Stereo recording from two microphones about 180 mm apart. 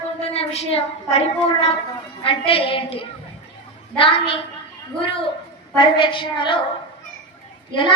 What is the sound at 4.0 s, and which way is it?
Speech, 30° left (ahead or behind).